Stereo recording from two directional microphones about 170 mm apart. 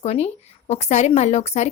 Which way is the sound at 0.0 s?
40° left (ahead or behind).